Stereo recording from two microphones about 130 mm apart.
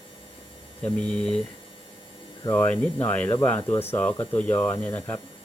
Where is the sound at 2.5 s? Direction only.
15° left (ahead or behind).